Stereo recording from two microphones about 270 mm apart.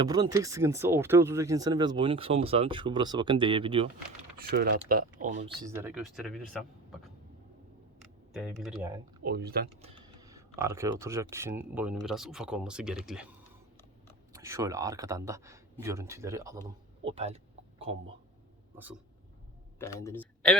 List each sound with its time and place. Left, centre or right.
0.0 s speech: centre
4.4 s speech: right
5.5 s speech: centre
8.3 s speech: centre
9.2 s speech: right
9.8 s speech: centre
14.3 s speech: centre
19.8 s a man's voice: centre